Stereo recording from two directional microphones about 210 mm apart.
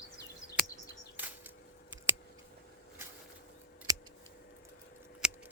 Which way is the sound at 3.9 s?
15° right (ahead or behind).